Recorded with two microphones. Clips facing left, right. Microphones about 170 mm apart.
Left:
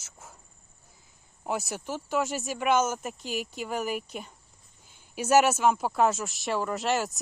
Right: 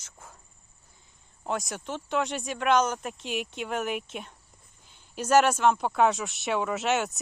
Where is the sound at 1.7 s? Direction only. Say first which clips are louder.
Even; 5° left (ahead or behind).